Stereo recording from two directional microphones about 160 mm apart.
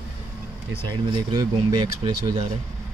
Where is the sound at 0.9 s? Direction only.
30° right (ahead or behind).